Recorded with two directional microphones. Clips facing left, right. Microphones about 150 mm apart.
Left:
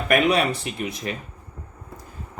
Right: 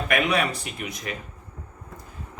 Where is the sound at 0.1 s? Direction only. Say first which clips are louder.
Left 5 dB; 35° left (ahead or behind).